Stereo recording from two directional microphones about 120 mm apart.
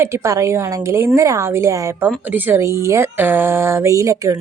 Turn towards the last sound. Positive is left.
turn(degrees=-25)  # may be behind; listen again after turning